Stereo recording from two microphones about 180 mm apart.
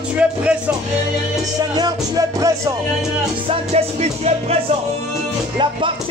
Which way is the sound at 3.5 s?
35° right (ahead or behind).